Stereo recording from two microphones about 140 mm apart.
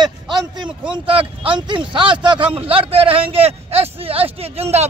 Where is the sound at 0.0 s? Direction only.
30° right (ahead or behind).